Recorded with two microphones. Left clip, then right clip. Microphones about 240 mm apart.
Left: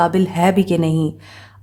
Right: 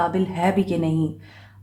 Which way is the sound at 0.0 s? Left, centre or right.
Left.